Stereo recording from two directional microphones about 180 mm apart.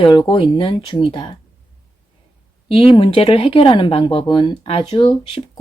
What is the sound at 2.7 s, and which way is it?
Speech, 30° left (ahead or behind).